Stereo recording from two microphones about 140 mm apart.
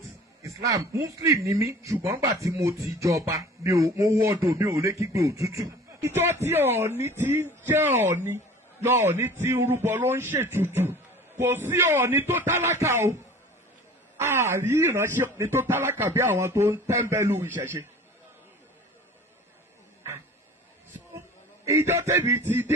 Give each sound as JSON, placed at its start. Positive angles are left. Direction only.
{"t": 0.4, "sound": "speech", "side_deg": -25}
{"t": 14.2, "sound": "speech", "side_deg": -20}
{"t": 21.6, "sound": "a man's voice", "side_deg": -20}